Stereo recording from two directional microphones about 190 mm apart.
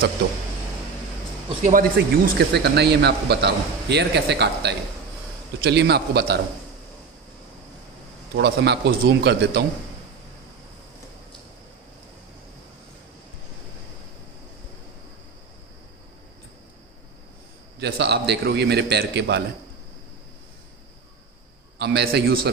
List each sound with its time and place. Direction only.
1.6 s speech: 45° right (ahead or behind)
2.0 s a man's voice: 60° right (ahead or behind)
8.4 s a man's voice: 60° right (ahead or behind)
17.7 s a man's voice: 60° right (ahead or behind)
21.7 s a man's voice: 60° right (ahead or behind)